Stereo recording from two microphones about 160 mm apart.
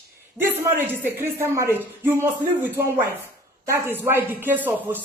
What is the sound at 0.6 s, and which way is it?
A man's voice, 15° right (ahead or behind).